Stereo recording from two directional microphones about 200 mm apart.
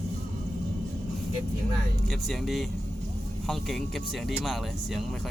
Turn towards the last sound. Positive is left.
turn(degrees=0)  # may be behind; listen again after turning